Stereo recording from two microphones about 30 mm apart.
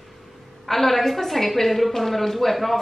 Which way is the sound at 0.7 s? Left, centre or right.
Centre.